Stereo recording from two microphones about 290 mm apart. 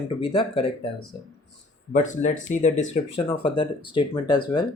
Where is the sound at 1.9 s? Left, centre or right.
Left.